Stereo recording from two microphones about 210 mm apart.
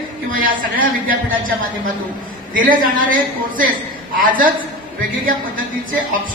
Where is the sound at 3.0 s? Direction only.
40° right (ahead or behind).